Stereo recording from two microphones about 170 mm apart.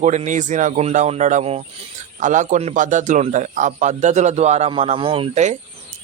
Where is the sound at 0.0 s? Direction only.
45° right (ahead or behind).